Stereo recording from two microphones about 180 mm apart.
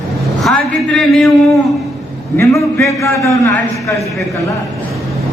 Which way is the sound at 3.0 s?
15° left (ahead or behind).